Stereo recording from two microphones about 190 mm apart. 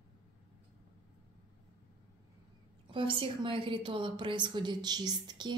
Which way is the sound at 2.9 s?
25° right (ahead or behind).